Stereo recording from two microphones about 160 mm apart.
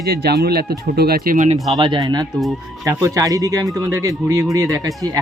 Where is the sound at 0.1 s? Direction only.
85° right; by 1.5 s 60° right (ahead or behind).